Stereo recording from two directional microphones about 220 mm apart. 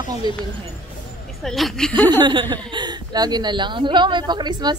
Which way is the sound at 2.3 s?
20° right (ahead or behind).